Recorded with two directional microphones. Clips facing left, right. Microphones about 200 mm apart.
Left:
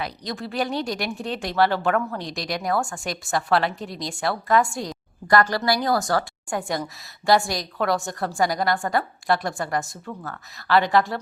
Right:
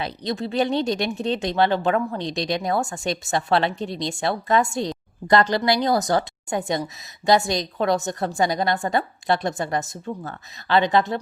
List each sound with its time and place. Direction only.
0.0 s speech: 25° right (ahead or behind)